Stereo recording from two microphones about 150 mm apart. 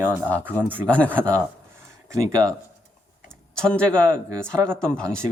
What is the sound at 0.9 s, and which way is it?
Speech, 10° left (ahead or behind).